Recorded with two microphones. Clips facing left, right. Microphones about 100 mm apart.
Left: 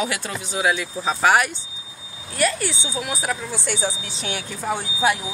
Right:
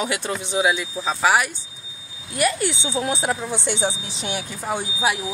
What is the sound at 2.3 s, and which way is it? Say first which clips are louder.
Speech: right 1 dB; 20° right (ahead or behind).